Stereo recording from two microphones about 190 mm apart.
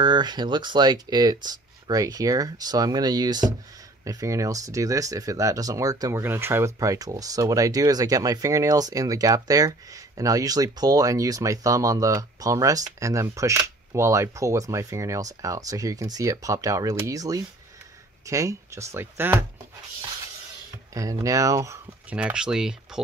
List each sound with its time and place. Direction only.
0.0 s speech: 25° right (ahead or behind)
20.9 s speech: 15° right (ahead or behind)
22.1 s speech: 5° right (ahead or behind)